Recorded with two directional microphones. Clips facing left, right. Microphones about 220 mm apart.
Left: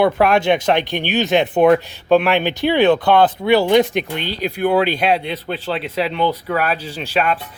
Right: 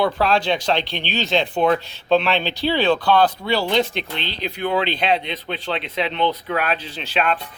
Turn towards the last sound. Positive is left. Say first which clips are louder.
# left 4 dB
turn(degrees=10)  # may be behind; listen again after turning